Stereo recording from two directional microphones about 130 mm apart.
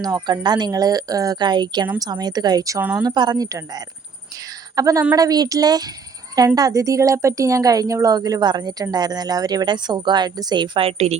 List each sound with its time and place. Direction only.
0.0 s a woman's voice: 30° right (ahead or behind); by 11.2 s 55° right (ahead or behind)